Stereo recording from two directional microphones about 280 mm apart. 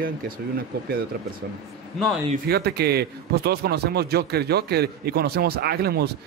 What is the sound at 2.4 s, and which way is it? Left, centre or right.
A man's voice, right.